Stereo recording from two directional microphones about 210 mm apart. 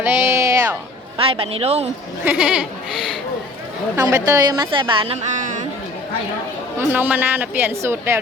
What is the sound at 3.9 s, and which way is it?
A woman's voice, 15° right (ahead or behind).